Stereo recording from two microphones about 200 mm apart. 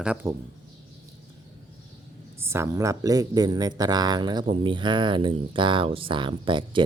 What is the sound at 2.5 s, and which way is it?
Speech, 15° right (ahead or behind).